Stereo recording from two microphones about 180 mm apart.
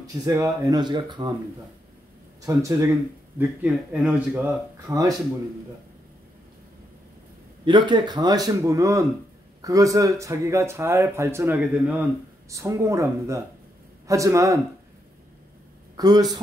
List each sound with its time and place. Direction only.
0.0 s a man's voice: 20° right (ahead or behind)
2.4 s speech: 15° right (ahead or behind)
7.6 s a man's voice: 25° right (ahead or behind)
16.0 s a man's voice: 20° right (ahead or behind)